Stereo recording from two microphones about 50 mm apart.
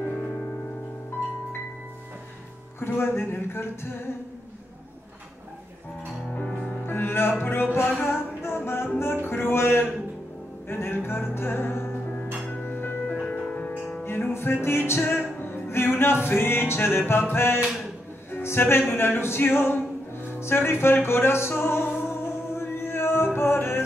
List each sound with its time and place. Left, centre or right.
2.8 s music: left
6.3 s music: left
6.9 s music: left
13.0 s music: left
14.0 s music: left
18.3 s speech: left
22.6 s chant: left